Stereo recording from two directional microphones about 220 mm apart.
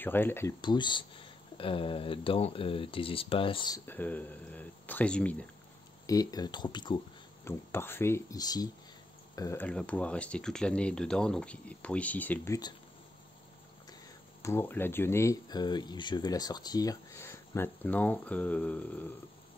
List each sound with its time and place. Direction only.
0.0 s speech: 10° left (ahead or behind)
6.0 s speech: 15° left (ahead or behind)
7.4 s speech: 10° left (ahead or behind)
14.4 s speech: 10° left (ahead or behind)